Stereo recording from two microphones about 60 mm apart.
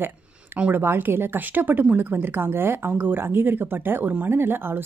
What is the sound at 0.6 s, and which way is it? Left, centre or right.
A woman's voice, right.